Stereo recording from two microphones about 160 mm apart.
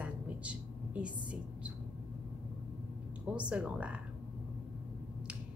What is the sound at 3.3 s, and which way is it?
Speech, 5° right (ahead or behind).